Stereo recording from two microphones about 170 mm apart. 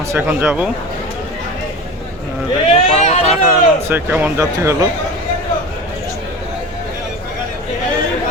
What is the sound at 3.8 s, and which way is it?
Speech, 10° right (ahead or behind).